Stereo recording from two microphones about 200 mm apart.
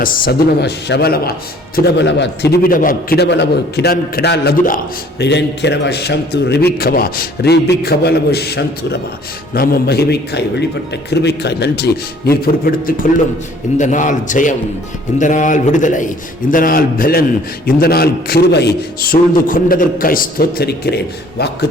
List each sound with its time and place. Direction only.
0.0 s a man's voice: 55° left (ahead or behind)
19.1 s a man's voice: 45° left (ahead or behind)